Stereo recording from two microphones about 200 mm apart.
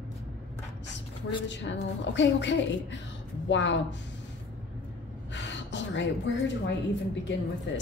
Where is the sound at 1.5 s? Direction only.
65° left (ahead or behind).